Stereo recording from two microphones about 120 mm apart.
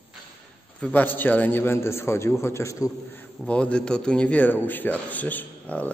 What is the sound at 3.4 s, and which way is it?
A man's voice, 10° left (ahead or behind).